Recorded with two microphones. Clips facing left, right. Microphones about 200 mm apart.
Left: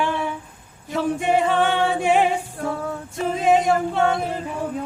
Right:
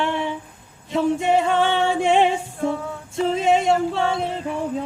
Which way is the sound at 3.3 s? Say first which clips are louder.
Left 1 dB; 25° right (ahead or behind).